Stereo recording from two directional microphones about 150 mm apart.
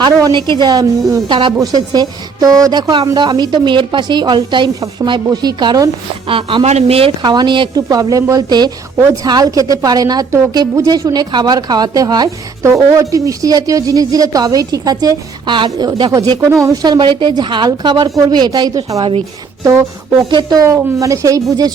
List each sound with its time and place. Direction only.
0.0 s speech: 30° right (ahead or behind)
6.2 s speech: 35° right (ahead or behind)
20.3 s speech: 25° right (ahead or behind)